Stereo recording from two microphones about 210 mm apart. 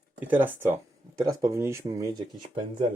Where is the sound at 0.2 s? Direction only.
10° right (ahead or behind).